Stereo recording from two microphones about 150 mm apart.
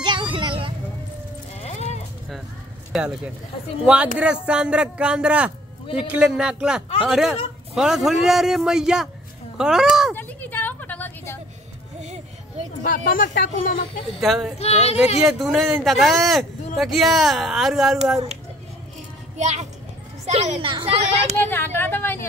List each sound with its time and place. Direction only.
0.0 s vehicle: 30° right (ahead or behind)
1.6 s sheep: 45° left (ahead or behind)
3.8 s a man's voice: 5° right (ahead or behind)
10.1 s a sound: 10° left (ahead or behind)
12.0 s music: 50° right (ahead or behind)
12.8 s speech: 65° left (ahead or behind)
14.2 s a man's voice: centre (ahead or behind)
14.6 s speech: 45° left (ahead or behind)
15.2 s a man's voice: centre (ahead or behind)
19.3 s a child's voice: 50° right (ahead or behind)
21.4 s speech: 15° left (ahead or behind)